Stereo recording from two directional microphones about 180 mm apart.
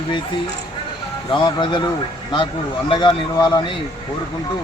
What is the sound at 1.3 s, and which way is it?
Speech, 25° left (ahead or behind).